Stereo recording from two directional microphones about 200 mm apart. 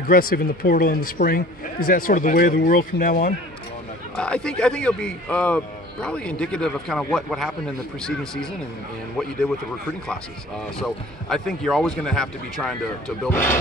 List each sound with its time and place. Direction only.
0.1 s speech: 45° left (ahead or behind)
4.2 s a man's voice: 5° left (ahead or behind)
10.8 s a man's voice: centre (ahead or behind)